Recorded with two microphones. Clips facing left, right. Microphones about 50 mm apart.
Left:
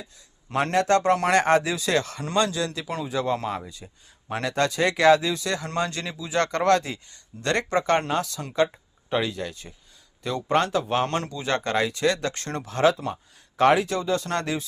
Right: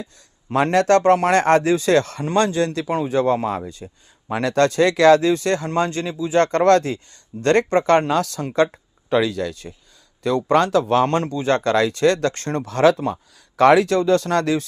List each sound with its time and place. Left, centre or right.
0.5 s speech: right
1.0 s a man's voice: right
3.8 s speech: centre
4.3 s a man's voice: right
8.1 s speech: right
9.0 s speech: right
10.5 s speech: right
11.3 s speech: right
11.6 s speech: right
11.9 s speech: right
12.6 s speech: right
13.6 s speech: right